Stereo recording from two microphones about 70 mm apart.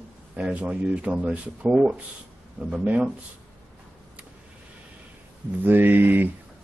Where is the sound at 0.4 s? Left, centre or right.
Centre.